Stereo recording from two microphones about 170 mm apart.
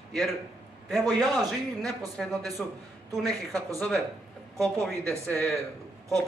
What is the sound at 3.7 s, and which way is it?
A man's voice, 5° left (ahead or behind).